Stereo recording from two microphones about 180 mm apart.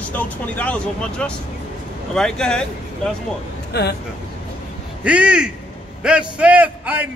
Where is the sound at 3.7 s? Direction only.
65° left (ahead or behind).